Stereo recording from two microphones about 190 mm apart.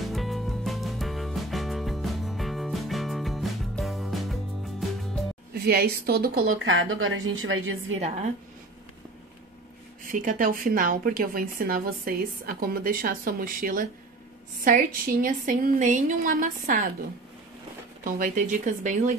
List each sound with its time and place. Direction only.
0.1 s music: centre (ahead or behind)
5.5 s a woman's voice: 55° right (ahead or behind)
6.4 s a woman's voice: 90° right
8.0 s speech: 35° right (ahead or behind)
10.1 s a woman's voice: 45° right (ahead or behind)
18.0 s speech: 45° right (ahead or behind)